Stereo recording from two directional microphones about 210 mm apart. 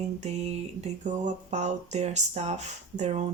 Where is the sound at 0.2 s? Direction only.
30° right (ahead or behind).